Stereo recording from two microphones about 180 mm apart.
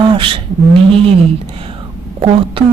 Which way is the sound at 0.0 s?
25° right (ahead or behind).